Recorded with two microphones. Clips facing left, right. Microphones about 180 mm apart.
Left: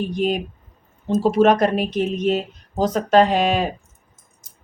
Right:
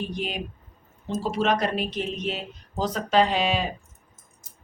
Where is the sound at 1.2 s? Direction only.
50° left (ahead or behind).